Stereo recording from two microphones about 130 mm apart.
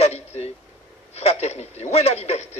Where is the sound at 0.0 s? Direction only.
55° left (ahead or behind).